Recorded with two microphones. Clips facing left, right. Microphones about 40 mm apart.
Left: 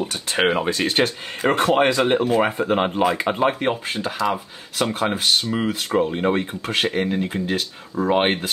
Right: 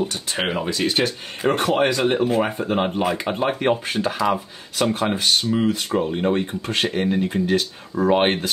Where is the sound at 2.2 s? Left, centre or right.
Centre.